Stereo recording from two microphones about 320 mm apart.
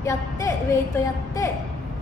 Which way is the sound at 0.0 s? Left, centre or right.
Centre.